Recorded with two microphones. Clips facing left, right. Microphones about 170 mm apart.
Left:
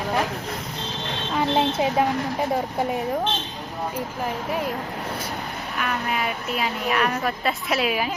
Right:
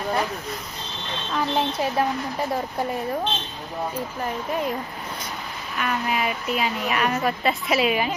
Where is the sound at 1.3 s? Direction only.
20° left (ahead or behind).